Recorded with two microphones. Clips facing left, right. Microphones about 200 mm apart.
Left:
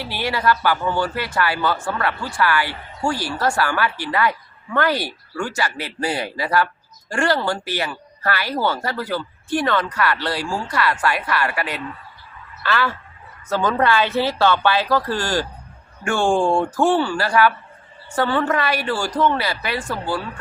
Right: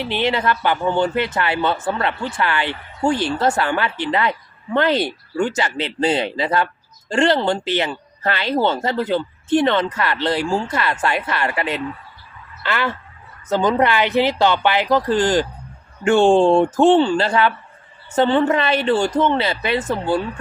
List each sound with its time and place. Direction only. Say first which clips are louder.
0.0 s a man's voice: right 3 dB; 20° right (ahead or behind)